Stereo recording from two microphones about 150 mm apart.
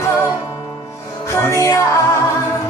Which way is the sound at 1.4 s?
20° left (ahead or behind).